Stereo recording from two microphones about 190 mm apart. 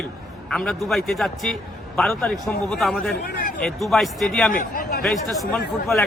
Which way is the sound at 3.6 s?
Centre (ahead or behind).